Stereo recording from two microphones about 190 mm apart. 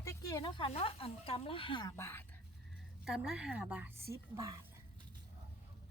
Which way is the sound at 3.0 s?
5° right (ahead or behind).